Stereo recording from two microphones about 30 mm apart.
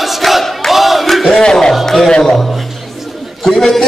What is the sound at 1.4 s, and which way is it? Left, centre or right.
Music, left.